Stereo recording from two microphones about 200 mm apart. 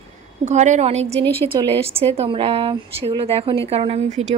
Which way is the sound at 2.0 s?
30° right (ahead or behind).